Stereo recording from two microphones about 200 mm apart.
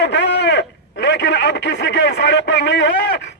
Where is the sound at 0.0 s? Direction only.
60° left (ahead or behind).